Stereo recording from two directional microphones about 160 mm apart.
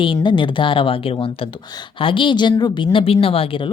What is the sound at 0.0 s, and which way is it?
A woman's voice, 30° left (ahead or behind).